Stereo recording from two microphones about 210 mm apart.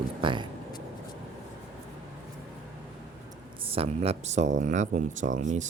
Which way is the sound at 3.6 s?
25° right (ahead or behind).